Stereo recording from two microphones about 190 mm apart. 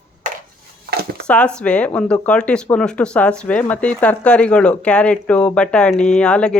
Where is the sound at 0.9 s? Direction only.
55° right (ahead or behind).